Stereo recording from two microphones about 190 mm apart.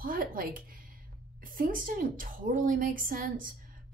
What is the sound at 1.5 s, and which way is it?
A woman's voice, 50° right (ahead or behind).